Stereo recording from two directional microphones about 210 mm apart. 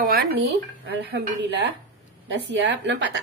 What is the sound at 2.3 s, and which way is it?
Speech, 55° right (ahead or behind).